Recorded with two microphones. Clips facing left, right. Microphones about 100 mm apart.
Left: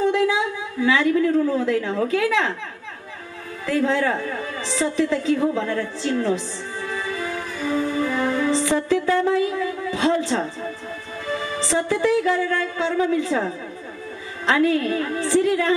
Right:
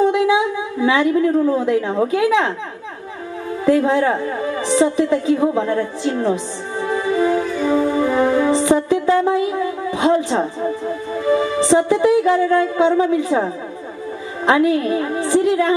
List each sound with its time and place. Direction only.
0.0 s a woman's voice: 20° right (ahead or behind)
3.6 s a sound: 20° right (ahead or behind)
14.4 s a woman's voice: 20° right (ahead or behind)